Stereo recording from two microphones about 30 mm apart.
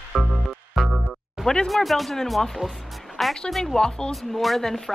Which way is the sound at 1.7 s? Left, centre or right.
Centre.